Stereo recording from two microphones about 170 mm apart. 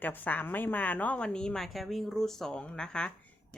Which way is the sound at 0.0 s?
10° left (ahead or behind).